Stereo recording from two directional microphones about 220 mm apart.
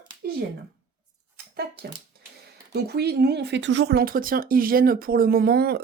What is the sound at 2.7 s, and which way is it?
Speech, 45° right (ahead or behind).